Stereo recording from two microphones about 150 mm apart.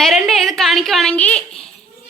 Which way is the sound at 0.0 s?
Centre (ahead or behind).